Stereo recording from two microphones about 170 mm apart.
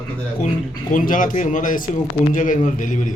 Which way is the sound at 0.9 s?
50° left (ahead or behind).